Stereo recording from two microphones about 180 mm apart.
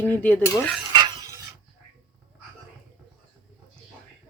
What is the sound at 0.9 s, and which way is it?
Stir, 20° right (ahead or behind).